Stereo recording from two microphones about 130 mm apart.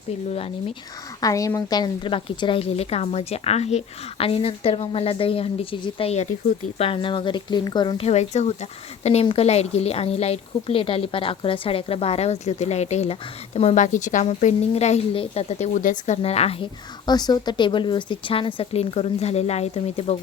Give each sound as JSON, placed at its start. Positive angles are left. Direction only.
{"t": 1.2, "sound": "a woman's voice", "side_deg": 25}
{"t": 8.0, "sound": "a woman's voice", "side_deg": 55}
{"t": 14.7, "sound": "a woman's voice", "side_deg": 55}
{"t": 16.2, "sound": "a woman's voice", "side_deg": 50}
{"t": 17.1, "sound": "a woman's voice", "side_deg": 30}